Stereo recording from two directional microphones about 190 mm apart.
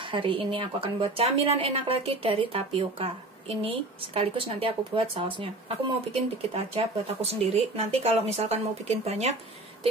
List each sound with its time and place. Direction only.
0.0 s a woman's voice: 25° right (ahead or behind)
6.5 s speech: 30° right (ahead or behind)